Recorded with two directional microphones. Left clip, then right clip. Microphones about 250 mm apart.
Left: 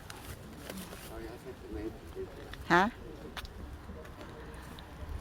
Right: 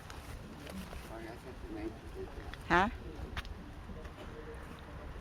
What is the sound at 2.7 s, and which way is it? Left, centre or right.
Speech, centre.